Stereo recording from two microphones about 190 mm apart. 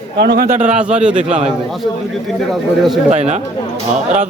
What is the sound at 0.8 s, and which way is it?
Speech, 5° right (ahead or behind).